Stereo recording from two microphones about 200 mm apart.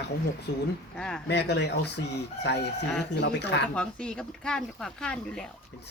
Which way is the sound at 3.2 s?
60° left (ahead or behind).